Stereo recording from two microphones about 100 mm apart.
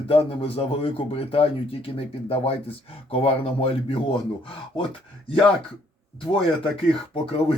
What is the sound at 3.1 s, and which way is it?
A man's voice, 70° left (ahead or behind).